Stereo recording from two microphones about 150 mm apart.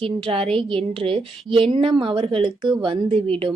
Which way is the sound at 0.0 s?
35° right (ahead or behind).